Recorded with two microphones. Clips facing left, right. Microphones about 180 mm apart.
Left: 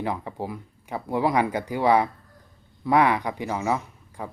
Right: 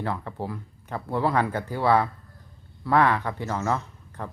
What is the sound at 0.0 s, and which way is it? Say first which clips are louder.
Speech: left 1 dB; 15° left (ahead or behind).